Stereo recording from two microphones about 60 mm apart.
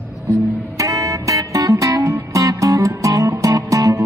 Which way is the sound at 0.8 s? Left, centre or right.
Right.